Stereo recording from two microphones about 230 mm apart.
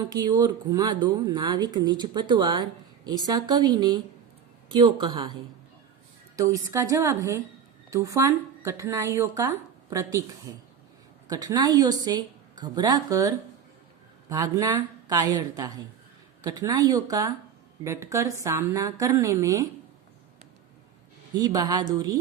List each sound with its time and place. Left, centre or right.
0.1 s speech: centre
6.3 s speech: centre
21.3 s speech: centre